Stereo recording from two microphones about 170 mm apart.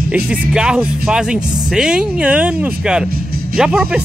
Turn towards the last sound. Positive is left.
turn(degrees=-5)  # may be behind; listen again after turning